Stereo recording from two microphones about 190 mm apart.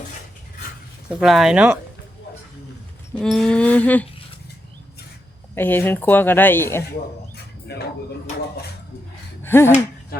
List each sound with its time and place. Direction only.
1.1 s speech: centre (ahead or behind)
3.2 s speech: 5° left (ahead or behind)
5.5 s speech: 10° left (ahead or behind)
7.7 s speech: 60° left (ahead or behind)
9.4 s a sound: 10° left (ahead or behind)